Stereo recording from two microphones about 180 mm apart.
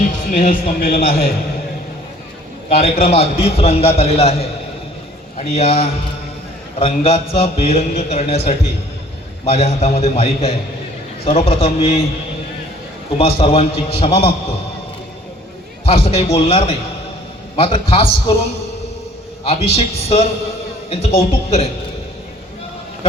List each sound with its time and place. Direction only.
0.0 s a man's voice: 45° left (ahead or behind)
2.6 s a man's voice: 35° left (ahead or behind)
13.1 s a man's voice: 30° left (ahead or behind)
15.9 s a man's voice: 35° left (ahead or behind)
19.5 s a man's voice: 35° left (ahead or behind)